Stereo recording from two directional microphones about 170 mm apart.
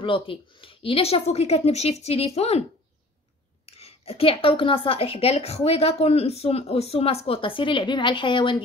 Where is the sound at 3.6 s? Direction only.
35° left (ahead or behind).